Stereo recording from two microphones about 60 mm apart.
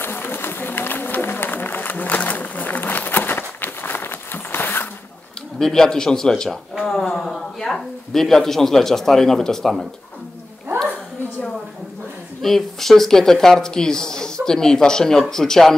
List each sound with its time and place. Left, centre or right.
0.0 s a sound: left
5.6 s speech: centre
6.7 s speech: centre
12.4 s speech: centre